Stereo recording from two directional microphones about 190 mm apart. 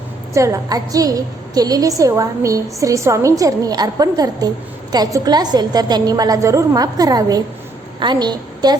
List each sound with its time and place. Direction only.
0.3 s a woman's voice: 15° right (ahead or behind)